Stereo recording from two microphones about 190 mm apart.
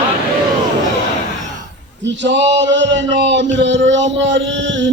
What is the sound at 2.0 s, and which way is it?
A man's voice, 70° right (ahead or behind).